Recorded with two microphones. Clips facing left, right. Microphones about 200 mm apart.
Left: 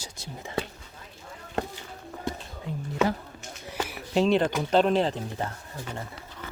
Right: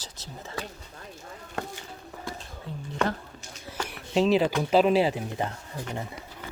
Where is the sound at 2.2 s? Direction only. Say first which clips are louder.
Left 5 dB; 20° left (ahead or behind).